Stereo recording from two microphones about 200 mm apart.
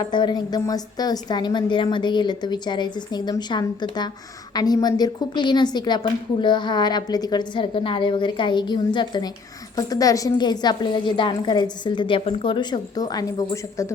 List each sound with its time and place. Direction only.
0.1 s a woman's voice: 20° left (ahead or behind)